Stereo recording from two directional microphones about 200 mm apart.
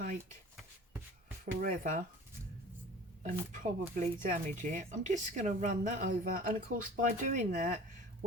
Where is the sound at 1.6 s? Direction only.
40° right (ahead or behind).